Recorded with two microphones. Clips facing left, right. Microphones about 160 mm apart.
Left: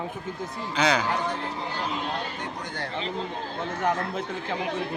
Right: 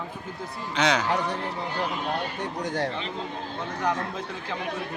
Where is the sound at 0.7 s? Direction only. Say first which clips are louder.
Even; centre (ahead or behind).